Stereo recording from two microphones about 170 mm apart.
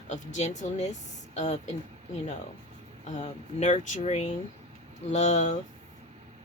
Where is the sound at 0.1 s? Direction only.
45° left (ahead or behind).